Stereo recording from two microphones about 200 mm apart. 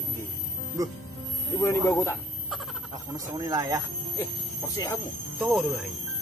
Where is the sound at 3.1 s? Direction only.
15° right (ahead or behind).